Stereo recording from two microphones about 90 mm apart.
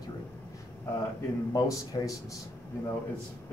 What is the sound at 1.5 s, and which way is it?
Speech, 40° left (ahead or behind).